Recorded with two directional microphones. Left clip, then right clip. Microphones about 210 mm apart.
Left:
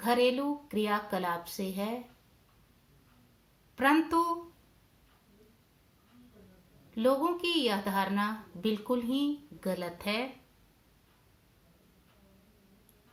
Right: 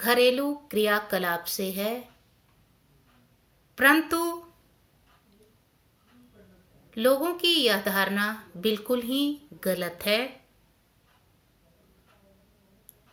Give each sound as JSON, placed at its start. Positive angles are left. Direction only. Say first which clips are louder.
{"t": 0.0, "sound": "a woman's voice", "louder": "right 6 dB", "side_deg": -5}
{"t": 3.8, "sound": "a woman's voice", "louder": "right 5 dB", "side_deg": -10}
{"t": 7.2, "sound": "a woman's voice", "louder": "right 6 dB", "side_deg": -5}